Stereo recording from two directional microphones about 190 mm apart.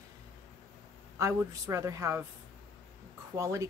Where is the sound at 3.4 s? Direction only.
15° right (ahead or behind).